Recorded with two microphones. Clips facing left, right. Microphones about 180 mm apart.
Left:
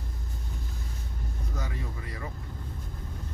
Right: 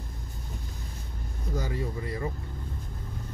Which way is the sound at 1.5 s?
35° right (ahead or behind).